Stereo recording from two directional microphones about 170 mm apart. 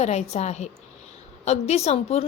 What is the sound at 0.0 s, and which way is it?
Speech, 40° left (ahead or behind).